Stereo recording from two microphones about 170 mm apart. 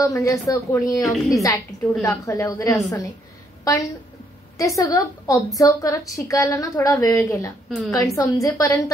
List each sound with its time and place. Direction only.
0.0 s a woman's voice: 20° left (ahead or behind)
1.0 s a woman's voice: centre (ahead or behind)
1.7 s a woman's voice: 45° left (ahead or behind)
2.0 s a woman's voice: 15° left (ahead or behind)
4.6 s a woman's voice: 20° left (ahead or behind)